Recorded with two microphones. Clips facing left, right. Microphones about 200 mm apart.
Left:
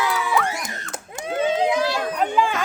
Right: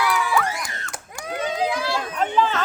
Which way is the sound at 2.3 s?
10° left (ahead or behind).